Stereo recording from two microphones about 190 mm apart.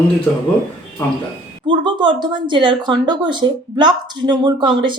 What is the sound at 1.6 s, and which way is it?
Speech, 25° right (ahead or behind).